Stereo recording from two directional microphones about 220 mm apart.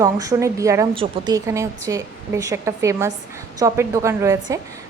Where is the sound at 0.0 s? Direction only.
15° right (ahead or behind).